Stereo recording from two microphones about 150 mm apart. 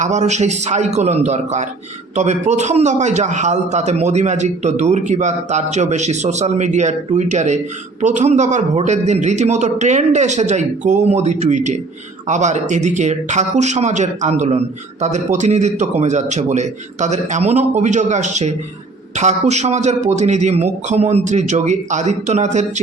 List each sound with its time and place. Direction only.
0.0 s a man's voice: 50° right (ahead or behind)